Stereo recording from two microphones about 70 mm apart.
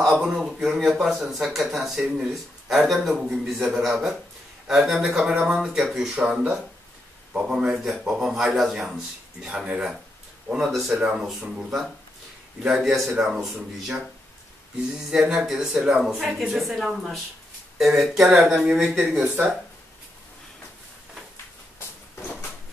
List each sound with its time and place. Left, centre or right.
0.1 s speech: centre
11.0 s speech: centre
15.0 s speech: centre
19.2 s speech: right
22.2 s a sound: centre